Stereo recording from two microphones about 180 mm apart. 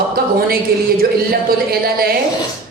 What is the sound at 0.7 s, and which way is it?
A woman's voice, 60° right (ahead or behind).